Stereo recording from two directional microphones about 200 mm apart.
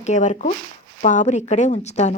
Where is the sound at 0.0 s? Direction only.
35° left (ahead or behind).